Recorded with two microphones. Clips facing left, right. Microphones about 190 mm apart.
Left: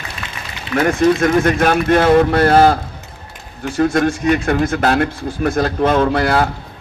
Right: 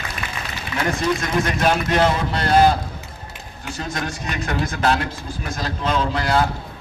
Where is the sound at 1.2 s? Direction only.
55° left (ahead or behind).